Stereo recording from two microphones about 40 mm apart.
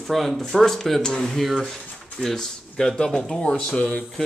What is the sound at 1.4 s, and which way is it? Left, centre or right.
Speech, centre.